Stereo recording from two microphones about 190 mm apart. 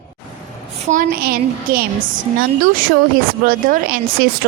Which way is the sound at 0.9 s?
45° right (ahead or behind).